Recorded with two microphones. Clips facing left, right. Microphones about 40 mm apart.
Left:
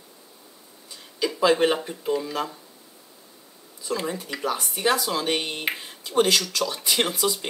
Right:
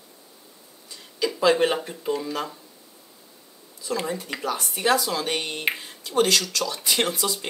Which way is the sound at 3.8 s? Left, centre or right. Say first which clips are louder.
Even; centre.